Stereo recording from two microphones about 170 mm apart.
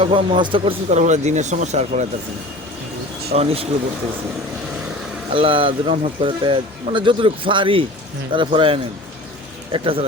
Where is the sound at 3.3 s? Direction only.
35° right (ahead or behind).